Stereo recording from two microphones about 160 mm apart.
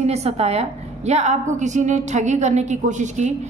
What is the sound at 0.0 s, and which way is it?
A woman's voice, 40° right (ahead or behind).